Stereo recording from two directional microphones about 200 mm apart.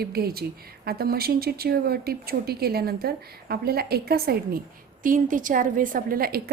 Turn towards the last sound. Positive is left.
turn(degrees=-45)  # may be behind; listen again after turning